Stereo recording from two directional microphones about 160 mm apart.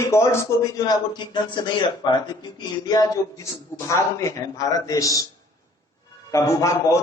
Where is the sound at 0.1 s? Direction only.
15° left (ahead or behind).